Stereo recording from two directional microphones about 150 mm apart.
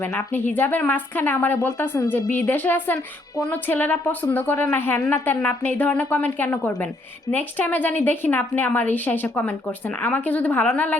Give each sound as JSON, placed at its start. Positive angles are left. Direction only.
{"t": 0.1, "sound": "speech", "side_deg": 15}